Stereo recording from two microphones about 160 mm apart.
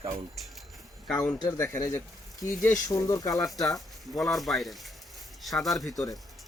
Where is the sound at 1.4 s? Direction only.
20° left (ahead or behind).